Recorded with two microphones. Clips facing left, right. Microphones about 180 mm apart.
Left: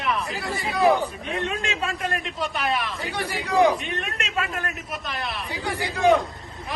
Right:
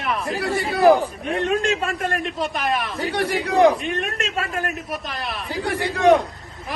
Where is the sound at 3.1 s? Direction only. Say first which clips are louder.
Right 3 dB; 65° right (ahead or behind).